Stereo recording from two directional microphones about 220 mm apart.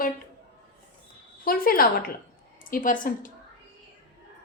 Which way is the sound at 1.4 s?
40° left (ahead or behind).